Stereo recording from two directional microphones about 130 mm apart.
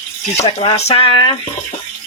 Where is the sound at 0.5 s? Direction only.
55° left (ahead or behind); by 1.3 s 40° left (ahead or behind).